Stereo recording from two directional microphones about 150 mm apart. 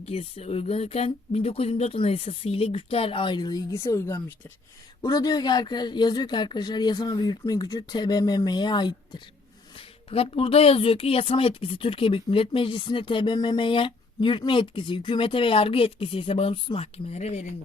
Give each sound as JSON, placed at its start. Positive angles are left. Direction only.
{"t": 0.0, "sound": "a woman's voice", "side_deg": 40}